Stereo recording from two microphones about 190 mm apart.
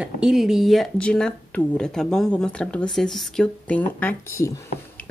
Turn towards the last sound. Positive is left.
turn(degrees=10)  # may be behind; listen again after turning